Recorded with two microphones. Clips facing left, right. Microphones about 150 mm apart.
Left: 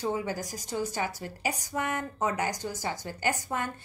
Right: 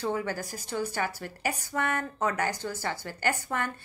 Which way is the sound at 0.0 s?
15° left (ahead or behind).